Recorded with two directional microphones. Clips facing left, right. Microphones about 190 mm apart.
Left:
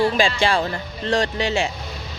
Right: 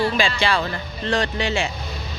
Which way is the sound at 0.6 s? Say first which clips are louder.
Left 1 dB; 35° left (ahead or behind).